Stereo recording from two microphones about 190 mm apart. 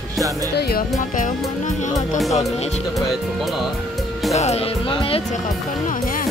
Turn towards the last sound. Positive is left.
turn(degrees=30)  # may be behind; listen again after turning